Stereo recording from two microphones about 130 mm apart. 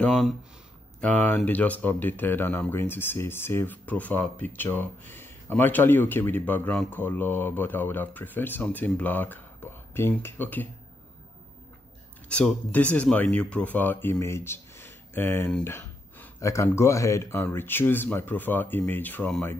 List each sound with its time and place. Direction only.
0.0 s speech: 5° left (ahead or behind)
12.3 s speech: 10° left (ahead or behind)